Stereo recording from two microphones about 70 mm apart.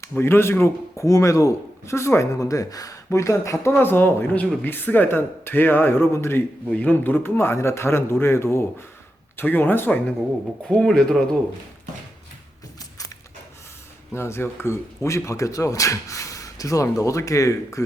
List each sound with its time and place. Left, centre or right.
0.2 s speech: left
3.7 s speech: left
10.7 s speech: centre
14.1 s speech: left